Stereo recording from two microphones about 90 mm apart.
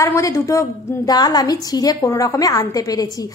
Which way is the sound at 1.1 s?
50° left (ahead or behind).